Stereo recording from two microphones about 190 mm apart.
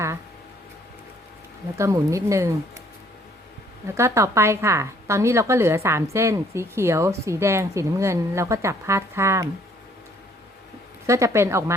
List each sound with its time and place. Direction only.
1.8 s a woman's voice: 15° right (ahead or behind)
3.9 s a woman's voice: 15° right (ahead or behind)
11.0 s a woman's voice: 15° right (ahead or behind)